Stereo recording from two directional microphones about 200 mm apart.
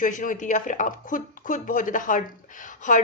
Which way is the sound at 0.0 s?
40° left (ahead or behind).